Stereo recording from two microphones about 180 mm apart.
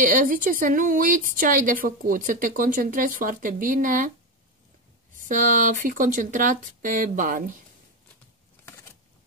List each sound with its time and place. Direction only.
0.0 s a woman's voice: 45° right (ahead or behind)
5.1 s a woman's voice: 45° right (ahead or behind)
8.6 s a sound: 15° left (ahead or behind)